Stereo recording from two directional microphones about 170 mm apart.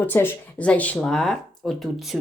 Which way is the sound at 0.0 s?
15° left (ahead or behind).